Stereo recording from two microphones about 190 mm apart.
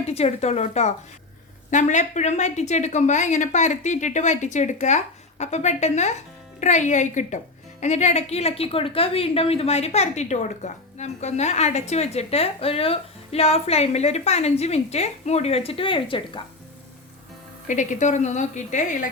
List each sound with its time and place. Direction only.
0.0 s speech: 35° left (ahead or behind)
17.7 s speech: 40° left (ahead or behind)